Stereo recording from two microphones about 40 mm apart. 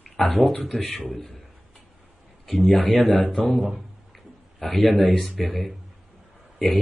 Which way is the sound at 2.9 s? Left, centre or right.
Centre.